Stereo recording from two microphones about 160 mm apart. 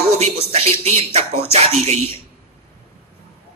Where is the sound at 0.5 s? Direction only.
40° right (ahead or behind).